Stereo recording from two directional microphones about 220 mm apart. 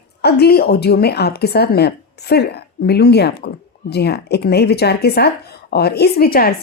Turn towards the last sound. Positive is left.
turn(degrees=45)  # may be behind; listen again after turning